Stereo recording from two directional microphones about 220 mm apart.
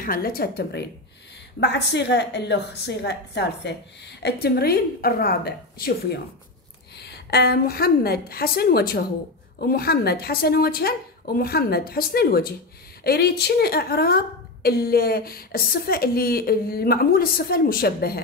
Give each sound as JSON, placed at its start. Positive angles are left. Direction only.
{"t": 0.0, "sound": "a woman's voice", "side_deg": 40}